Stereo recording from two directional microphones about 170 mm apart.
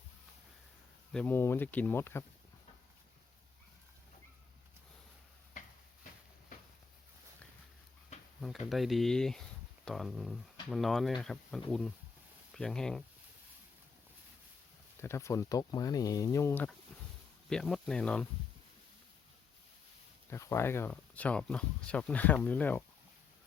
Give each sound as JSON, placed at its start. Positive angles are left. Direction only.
{"t": 1.1, "sound": "speech", "side_deg": 10}
{"t": 8.4, "sound": "speech", "side_deg": 0}
{"t": 15.0, "sound": "speech", "side_deg": 15}
{"t": 17.5, "sound": "speech", "side_deg": 5}
{"t": 20.3, "sound": "speech", "side_deg": 15}